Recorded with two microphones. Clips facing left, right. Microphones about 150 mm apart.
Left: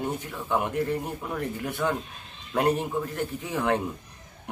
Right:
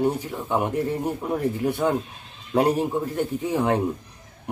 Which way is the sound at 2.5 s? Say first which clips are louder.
Right 4 dB; 25° right (ahead or behind).